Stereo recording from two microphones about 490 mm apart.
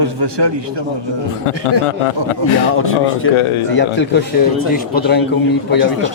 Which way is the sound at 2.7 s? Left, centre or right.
Left.